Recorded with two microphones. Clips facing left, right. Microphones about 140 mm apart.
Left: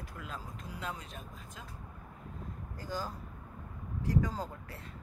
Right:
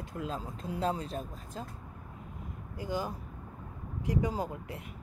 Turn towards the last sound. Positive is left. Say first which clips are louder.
# right 5 dB
turn(degrees=-15)  # may be behind; listen again after turning